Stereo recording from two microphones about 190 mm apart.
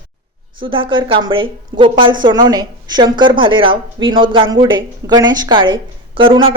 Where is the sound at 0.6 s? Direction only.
25° right (ahead or behind).